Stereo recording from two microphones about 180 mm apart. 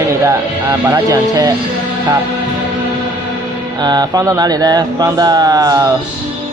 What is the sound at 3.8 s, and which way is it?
Speech, 20° right (ahead or behind).